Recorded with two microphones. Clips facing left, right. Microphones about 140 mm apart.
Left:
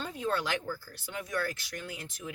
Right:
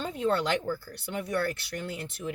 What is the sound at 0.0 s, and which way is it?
Speech, 60° right (ahead or behind).